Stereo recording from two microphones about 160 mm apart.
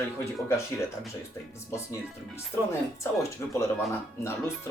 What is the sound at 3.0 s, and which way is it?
Speech, 15° left (ahead or behind).